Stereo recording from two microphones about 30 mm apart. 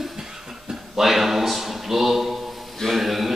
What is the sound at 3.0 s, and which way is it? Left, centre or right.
Mantra, centre.